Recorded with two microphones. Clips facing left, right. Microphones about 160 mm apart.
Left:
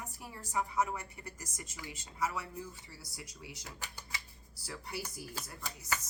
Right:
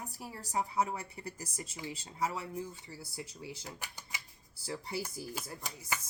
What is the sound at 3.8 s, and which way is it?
Speech, 15° right (ahead or behind).